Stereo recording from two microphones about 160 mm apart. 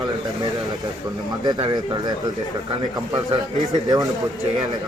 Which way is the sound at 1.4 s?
25° right (ahead or behind).